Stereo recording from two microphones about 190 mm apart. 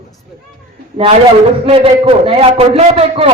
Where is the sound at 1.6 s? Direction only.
30° right (ahead or behind).